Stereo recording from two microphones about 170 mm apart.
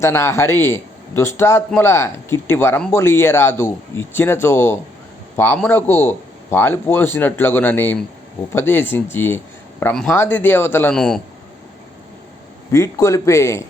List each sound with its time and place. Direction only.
0.0 s a man's voice: 15° left (ahead or behind)
12.7 s a man's voice: 20° left (ahead or behind)